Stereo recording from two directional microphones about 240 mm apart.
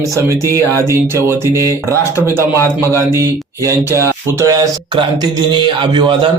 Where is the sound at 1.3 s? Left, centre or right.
Centre.